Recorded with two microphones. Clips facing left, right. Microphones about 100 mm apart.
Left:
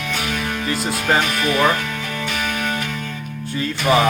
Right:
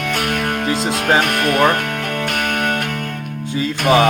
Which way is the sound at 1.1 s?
55° right (ahead or behind).